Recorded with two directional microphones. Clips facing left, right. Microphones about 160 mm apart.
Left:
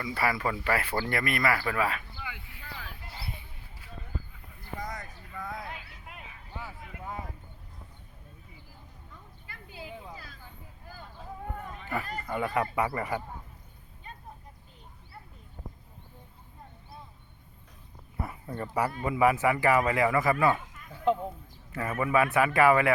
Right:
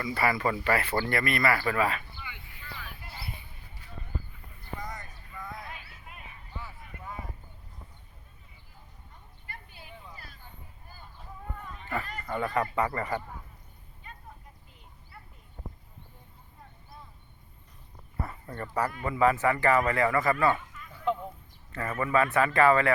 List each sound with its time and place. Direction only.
0.0 s speech: centre (ahead or behind)
4.9 s vehicle: 80° left
6.1 s vehicle: 90° left
10.8 s a sound: 90° left
12.2 s speech: 5° left (ahead or behind)
18.2 s speech: 10° left (ahead or behind)
20.9 s a sound: 25° left (ahead or behind)
21.7 s speech: 10° left (ahead or behind)